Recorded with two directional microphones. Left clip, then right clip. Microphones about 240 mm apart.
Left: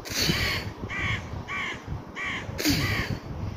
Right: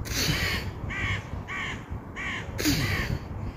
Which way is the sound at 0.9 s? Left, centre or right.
Centre.